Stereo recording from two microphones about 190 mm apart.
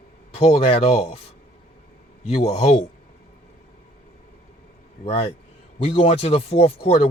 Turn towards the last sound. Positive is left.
turn(degrees=30)  # may be behind; listen again after turning